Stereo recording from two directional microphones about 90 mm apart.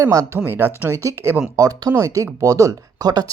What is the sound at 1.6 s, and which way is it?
Speech, 45° right (ahead or behind).